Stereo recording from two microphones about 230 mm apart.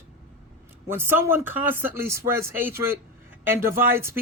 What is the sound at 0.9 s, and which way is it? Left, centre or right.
Speech, centre.